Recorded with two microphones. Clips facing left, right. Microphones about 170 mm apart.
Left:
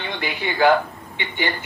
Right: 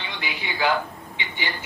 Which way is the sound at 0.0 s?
55° left (ahead or behind).